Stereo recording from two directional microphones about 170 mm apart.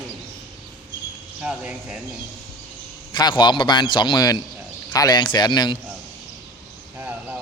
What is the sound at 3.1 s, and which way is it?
Speech, 25° left (ahead or behind).